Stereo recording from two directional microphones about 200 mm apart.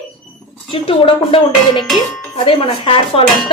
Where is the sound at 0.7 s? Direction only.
25° left (ahead or behind).